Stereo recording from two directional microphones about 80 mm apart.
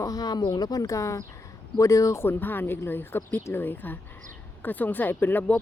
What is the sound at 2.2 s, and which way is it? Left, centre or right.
Speech, left.